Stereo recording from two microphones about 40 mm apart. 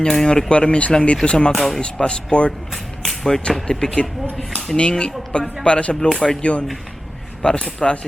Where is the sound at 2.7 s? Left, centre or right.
Centre.